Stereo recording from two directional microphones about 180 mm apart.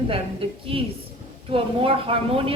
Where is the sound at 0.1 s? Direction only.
30° right (ahead or behind).